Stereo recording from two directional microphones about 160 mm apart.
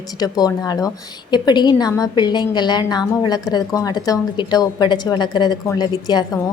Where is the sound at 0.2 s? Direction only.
25° left (ahead or behind).